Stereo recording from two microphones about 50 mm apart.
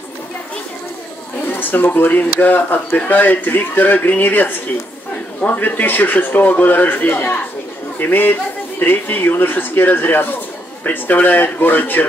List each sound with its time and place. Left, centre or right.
1.5 s speech: left